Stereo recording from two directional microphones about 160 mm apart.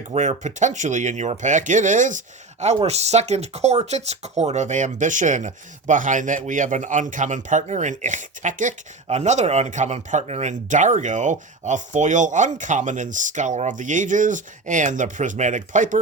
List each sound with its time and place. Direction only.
0.1 s speech: 50° right (ahead or behind)